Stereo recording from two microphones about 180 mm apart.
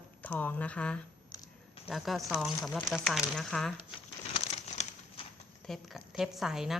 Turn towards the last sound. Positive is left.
turn(degrees=0)  # may be behind; listen again after turning